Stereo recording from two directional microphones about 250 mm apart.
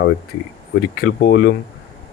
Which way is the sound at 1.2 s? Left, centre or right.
Left.